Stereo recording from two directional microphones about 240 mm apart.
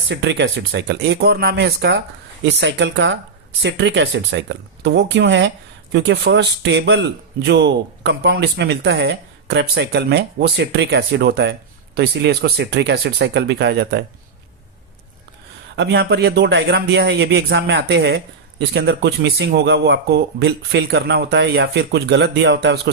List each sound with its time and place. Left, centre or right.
0.1 s speech: right
15.7 s speech: right